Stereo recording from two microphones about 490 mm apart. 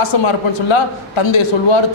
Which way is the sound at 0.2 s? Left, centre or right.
Left.